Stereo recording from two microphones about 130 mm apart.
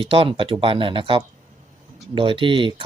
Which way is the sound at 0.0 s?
45° right (ahead or behind).